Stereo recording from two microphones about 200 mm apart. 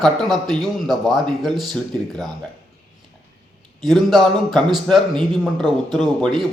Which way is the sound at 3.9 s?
Centre (ahead or behind).